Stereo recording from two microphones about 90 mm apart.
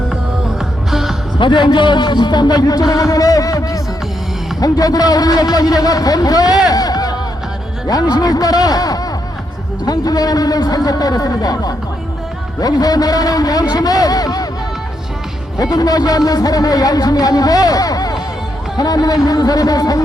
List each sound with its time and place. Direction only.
0.9 s music: 5° right (ahead or behind)
1.4 s speech: 60° left (ahead or behind)
6.7 s a sound: 45° left (ahead or behind)
7.9 s speech: 45° left (ahead or behind)
12.5 s speech: 45° left (ahead or behind)
15.5 s speech: 45° left (ahead or behind)